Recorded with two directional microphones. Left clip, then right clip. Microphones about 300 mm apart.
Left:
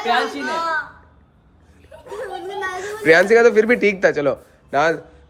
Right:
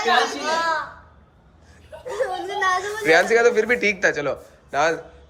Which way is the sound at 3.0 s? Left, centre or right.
Left.